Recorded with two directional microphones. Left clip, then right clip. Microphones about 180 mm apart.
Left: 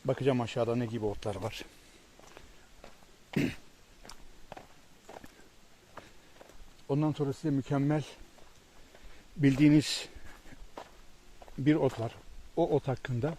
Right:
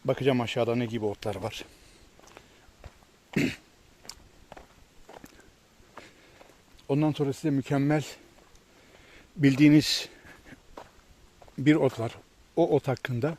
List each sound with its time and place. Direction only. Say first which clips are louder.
0.0 s speech: right 4 dB; 30° right (ahead or behind)
3.3 s speech: right 4 dB; 35° right (ahead or behind)
4.0 s walk: right 3 dB; 10° right (ahead or behind)
5.1 s a sound: even; 5° right (ahead or behind)
6.8 s speech: right 5 dB; 45° right (ahead or behind)
9.4 s speech: right 4 dB; 30° right (ahead or behind)
11.6 s speech: right 5 dB; 40° right (ahead or behind)